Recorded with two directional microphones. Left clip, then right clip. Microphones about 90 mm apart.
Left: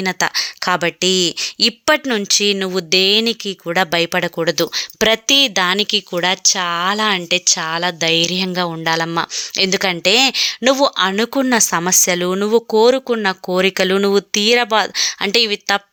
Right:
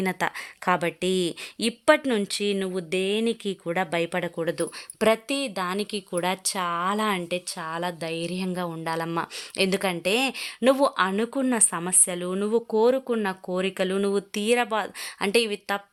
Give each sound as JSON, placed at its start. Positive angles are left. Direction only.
{"t": 0.0, "sound": "speech", "side_deg": 10}
{"t": 2.0, "sound": "speech", "side_deg": 25}
{"t": 7.3, "sound": "speech", "side_deg": 30}
{"t": 8.3, "sound": "speech", "side_deg": 25}
{"t": 11.2, "sound": "speech", "side_deg": 30}
{"t": 12.4, "sound": "speech", "side_deg": 35}
{"t": 13.5, "sound": "speech", "side_deg": 35}